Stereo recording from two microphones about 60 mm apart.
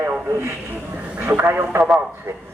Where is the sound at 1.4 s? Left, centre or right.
Right.